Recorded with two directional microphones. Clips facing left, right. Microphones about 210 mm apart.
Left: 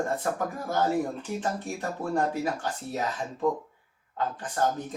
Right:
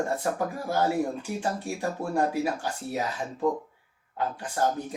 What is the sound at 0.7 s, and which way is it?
Speech, 10° right (ahead or behind).